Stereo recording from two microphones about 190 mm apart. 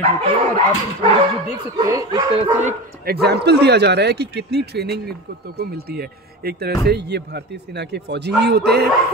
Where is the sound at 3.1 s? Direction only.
60° right (ahead or behind).